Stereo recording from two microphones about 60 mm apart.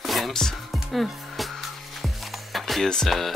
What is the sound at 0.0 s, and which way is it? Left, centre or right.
Music, centre.